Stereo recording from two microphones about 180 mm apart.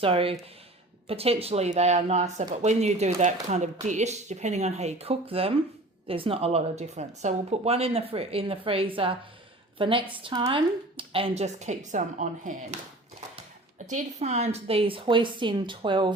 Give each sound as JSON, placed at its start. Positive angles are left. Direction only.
{"t": 0.0, "sound": "speech", "side_deg": -30}
{"t": 13.9, "sound": "a woman's voice", "side_deg": -40}